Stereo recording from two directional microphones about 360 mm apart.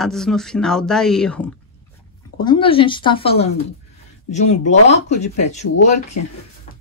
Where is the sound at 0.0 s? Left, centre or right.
Centre.